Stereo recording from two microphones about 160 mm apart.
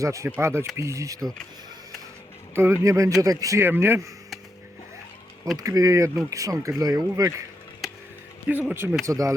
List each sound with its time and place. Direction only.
0.0 s speech: 20° right (ahead or behind)
2.6 s speech: 15° right (ahead or behind)
5.5 s speech: 20° right (ahead or behind)
8.4 s speech: 10° right (ahead or behind)